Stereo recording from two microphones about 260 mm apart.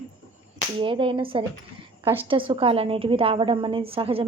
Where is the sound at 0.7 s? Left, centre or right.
Centre.